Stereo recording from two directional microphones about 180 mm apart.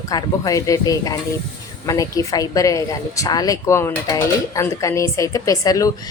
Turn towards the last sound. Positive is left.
turn(degrees=20)  # may be behind; listen again after turning